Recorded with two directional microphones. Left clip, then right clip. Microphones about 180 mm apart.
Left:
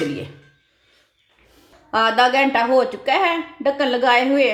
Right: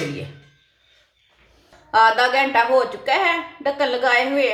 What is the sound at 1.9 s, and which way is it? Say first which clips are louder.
A woman's voice: right 1 dB; 45° left (ahead or behind).